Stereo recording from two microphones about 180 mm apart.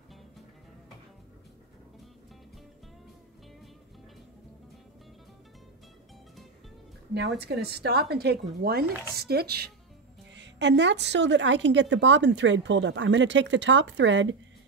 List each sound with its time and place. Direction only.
7.4 s speech: 60° right (ahead or behind)
10.3 s a woman's voice: 75° right (ahead or behind)